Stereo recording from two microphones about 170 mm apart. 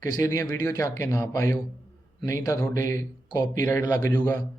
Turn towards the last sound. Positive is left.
turn(degrees=10)  # may be behind; listen again after turning